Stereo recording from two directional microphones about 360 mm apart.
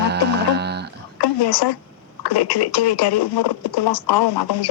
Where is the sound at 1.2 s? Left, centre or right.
Left.